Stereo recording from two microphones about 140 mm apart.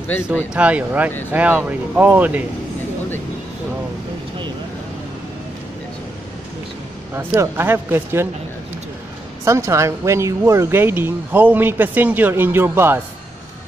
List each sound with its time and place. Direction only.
0.5 s speech: 10° right (ahead or behind)
7.2 s speech: 15° right (ahead or behind)
9.4 s speech: 20° right (ahead or behind)